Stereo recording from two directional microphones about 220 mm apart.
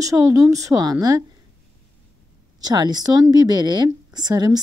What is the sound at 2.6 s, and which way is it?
A woman's voice, 20° right (ahead or behind).